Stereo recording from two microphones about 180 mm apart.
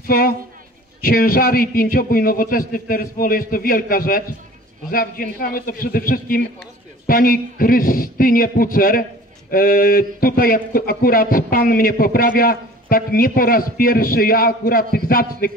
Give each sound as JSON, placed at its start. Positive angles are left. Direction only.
{"t": 1.0, "sound": "speech", "side_deg": 55}